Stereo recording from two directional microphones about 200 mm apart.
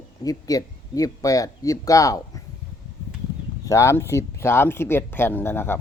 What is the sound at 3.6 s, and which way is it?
Speech, 15° left (ahead or behind).